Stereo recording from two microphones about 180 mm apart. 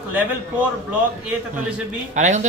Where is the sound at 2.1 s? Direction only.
40° right (ahead or behind).